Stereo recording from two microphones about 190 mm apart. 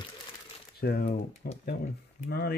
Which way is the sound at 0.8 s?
55° left (ahead or behind).